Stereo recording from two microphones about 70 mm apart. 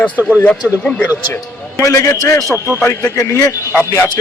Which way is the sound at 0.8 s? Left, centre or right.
Centre.